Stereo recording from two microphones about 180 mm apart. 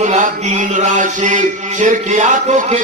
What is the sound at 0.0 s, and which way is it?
A man's voice, 40° right (ahead or behind).